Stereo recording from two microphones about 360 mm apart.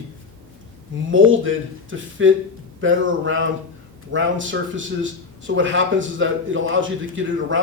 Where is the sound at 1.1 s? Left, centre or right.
Right.